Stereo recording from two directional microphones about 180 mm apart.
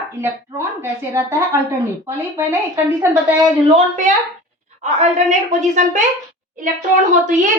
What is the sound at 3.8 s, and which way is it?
A woman's voice, 40° right (ahead or behind).